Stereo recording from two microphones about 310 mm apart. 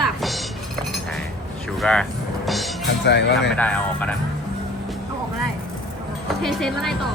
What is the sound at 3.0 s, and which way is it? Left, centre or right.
Speech, left.